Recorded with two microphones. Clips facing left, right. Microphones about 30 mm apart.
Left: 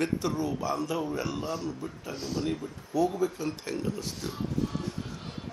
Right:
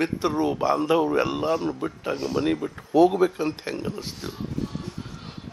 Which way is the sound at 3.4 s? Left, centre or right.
Right.